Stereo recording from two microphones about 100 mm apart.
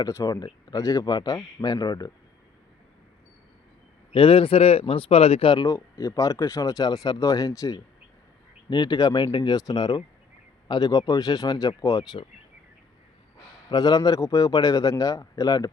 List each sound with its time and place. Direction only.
0.1 s speech: 30° left (ahead or behind)
0.3 s speech: 40° left (ahead or behind)
4.1 s a man's voice: 65° left (ahead or behind)
5.6 s speech: 30° left (ahead or behind)
13.7 s speech: 40° left (ahead or behind)